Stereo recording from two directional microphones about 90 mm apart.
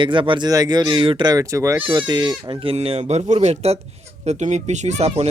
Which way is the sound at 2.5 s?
85° right.